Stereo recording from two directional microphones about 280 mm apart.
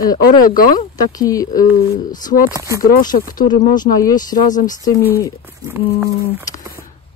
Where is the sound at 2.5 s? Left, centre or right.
Centre.